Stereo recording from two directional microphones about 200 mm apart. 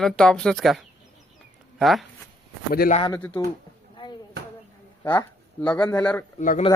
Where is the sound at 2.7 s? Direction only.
45° left (ahead or behind).